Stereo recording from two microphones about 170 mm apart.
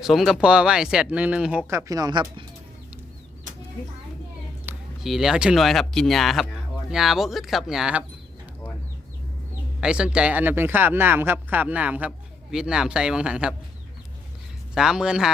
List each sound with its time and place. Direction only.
0.0 s speech: centre (ahead or behind)
1.7 s speech: 20° right (ahead or behind)
4.7 s a sound: 10° right (ahead or behind)
5.0 s speech: centre (ahead or behind)
9.8 s speech: 5° right (ahead or behind)
14.8 s speech: 5° right (ahead or behind)